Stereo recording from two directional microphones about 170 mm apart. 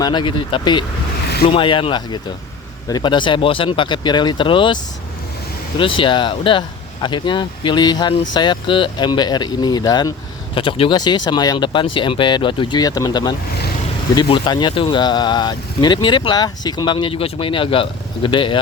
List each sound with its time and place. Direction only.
0.0 s speech: 25° left (ahead or behind)